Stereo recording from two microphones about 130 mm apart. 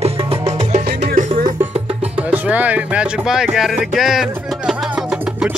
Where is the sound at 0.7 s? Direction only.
65° right (ahead or behind).